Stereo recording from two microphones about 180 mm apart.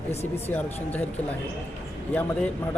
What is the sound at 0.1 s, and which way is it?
Speech, 35° left (ahead or behind).